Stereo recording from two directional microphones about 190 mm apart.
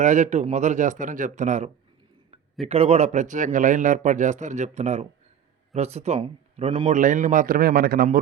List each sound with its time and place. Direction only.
0.0 s speech: 40° right (ahead or behind)
6.9 s a man's voice: 45° right (ahead or behind)